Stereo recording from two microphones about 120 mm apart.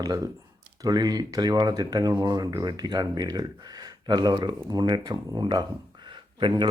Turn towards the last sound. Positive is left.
turn(degrees=-40)  # may be behind; listen again after turning